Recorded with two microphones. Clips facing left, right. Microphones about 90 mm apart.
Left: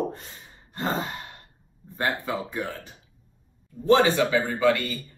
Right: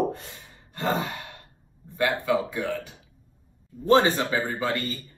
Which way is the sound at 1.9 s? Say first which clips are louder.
Right 4 dB; 30° left (ahead or behind).